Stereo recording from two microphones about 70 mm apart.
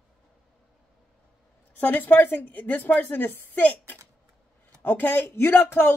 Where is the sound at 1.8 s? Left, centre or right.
Left.